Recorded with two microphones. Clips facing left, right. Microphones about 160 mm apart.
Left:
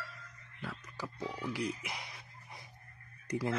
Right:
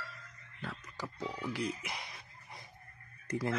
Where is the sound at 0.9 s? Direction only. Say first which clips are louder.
Even; 15° right (ahead or behind).